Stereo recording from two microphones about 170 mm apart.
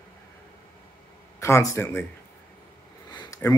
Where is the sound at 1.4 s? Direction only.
15° left (ahead or behind).